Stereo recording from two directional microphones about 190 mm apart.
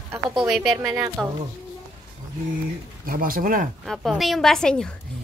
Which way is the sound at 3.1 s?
50° right (ahead or behind).